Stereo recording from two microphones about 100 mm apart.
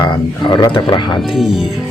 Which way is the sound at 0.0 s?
50° left (ahead or behind).